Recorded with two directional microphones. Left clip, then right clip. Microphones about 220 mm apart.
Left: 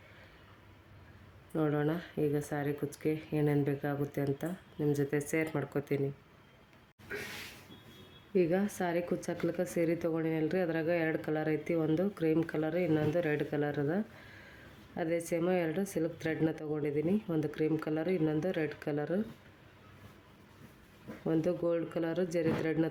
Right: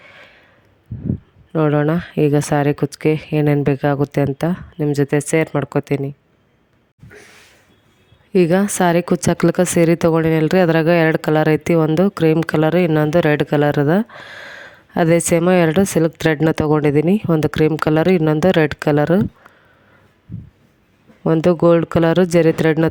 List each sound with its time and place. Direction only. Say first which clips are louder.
1.5 s a woman's voice: right 16 dB; 40° right (ahead or behind)
8.3 s a woman's voice: right 15 dB; 45° right (ahead or behind)
21.2 s a woman's voice: right 18 dB; 45° right (ahead or behind)